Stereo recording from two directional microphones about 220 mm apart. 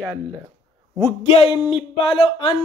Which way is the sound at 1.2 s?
25° left (ahead or behind).